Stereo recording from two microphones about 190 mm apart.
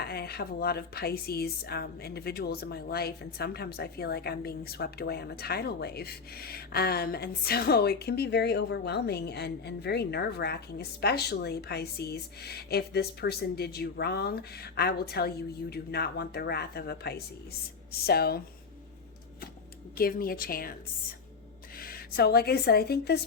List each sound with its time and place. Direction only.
0.0 s speech: 55° left (ahead or behind)
20.0 s a woman's voice: 50° left (ahead or behind)